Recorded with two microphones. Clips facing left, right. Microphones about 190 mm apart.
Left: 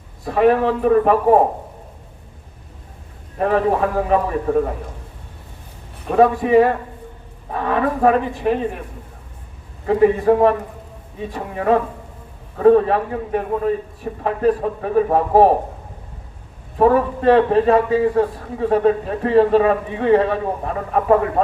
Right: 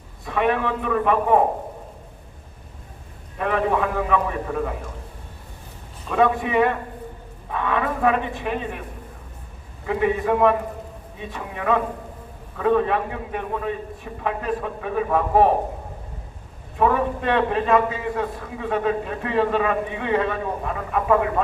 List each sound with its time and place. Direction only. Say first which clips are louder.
0.3 s a man's voice: left 7 dB; 40° left (ahead or behind)
3.3 s a man's voice: left 4 dB; 35° left (ahead or behind)
6.1 s a man's voice: left 6 dB; 35° left (ahead or behind)
9.8 s a man's voice: left 7 dB; 40° left (ahead or behind)
16.7 s a man's voice: left 5 dB; 40° left (ahead or behind)